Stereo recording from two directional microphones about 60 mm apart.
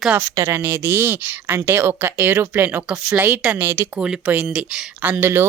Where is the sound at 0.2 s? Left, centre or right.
Right.